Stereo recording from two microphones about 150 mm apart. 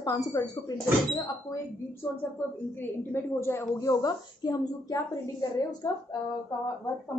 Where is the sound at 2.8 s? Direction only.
15° left (ahead or behind).